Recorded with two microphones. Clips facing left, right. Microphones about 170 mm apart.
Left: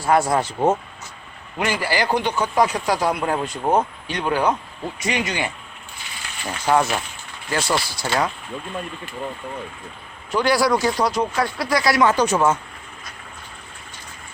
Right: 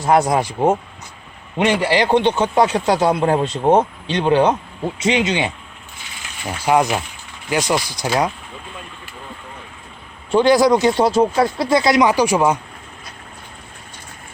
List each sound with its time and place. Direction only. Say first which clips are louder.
0.0 s speech: right 3 dB; 20° right (ahead or behind)
1.5 s speech: right 6 dB; 25° right (ahead or behind)
6.4 s speech: right 3 dB; 10° right (ahead or behind)
10.3 s speech: right 6 dB; 20° right (ahead or behind)